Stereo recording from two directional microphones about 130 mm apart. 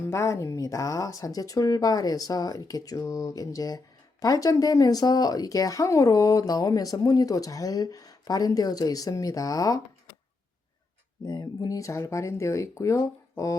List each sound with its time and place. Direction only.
0.0 s speech: 20° left (ahead or behind)
11.3 s speech: 30° left (ahead or behind)